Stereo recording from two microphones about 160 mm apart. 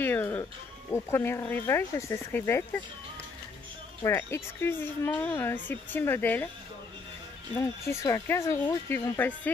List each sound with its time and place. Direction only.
0.0 s music: 15° left (ahead or behind)
0.9 s speech: 15° left (ahead or behind)
4.0 s speech: 15° left (ahead or behind)
7.8 s speech: 15° left (ahead or behind)